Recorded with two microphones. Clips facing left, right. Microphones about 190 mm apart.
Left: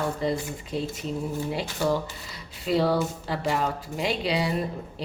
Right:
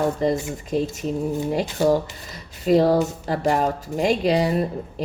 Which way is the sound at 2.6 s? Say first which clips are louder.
Right 6 dB; 45° right (ahead or behind).